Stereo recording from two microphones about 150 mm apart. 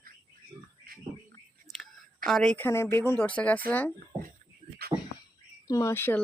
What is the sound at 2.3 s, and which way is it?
Speech, 5° left (ahead or behind).